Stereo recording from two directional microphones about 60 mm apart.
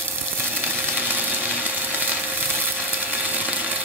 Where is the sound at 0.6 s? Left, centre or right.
Right.